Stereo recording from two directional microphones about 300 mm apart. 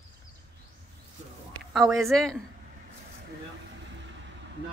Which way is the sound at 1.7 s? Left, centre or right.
Centre.